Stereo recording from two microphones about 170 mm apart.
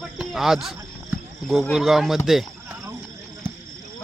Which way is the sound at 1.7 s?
Centre (ahead or behind).